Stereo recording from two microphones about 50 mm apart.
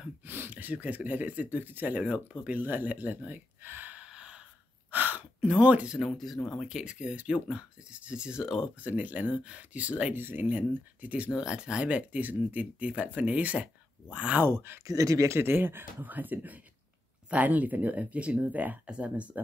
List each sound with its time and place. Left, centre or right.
0.3 s speech: right
1.6 s speech: right
4.0 s gasp: right
4.9 s gasp: right
5.9 s speech: centre
6.7 s speech: centre
8.8 s speech: right
10.1 s speech: right
11.3 s speech: centre
14.5 s speech: right